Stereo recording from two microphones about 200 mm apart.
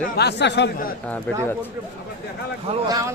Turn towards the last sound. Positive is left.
turn(degrees=-15)  # may be behind; listen again after turning